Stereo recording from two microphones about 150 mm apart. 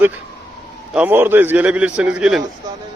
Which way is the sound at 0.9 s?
15° right (ahead or behind).